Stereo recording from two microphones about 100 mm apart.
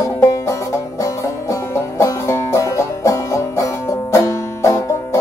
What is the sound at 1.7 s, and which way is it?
Music, 30° left (ahead or behind).